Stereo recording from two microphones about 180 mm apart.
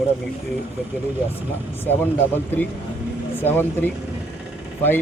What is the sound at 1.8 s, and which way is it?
Speech, 10° left (ahead or behind).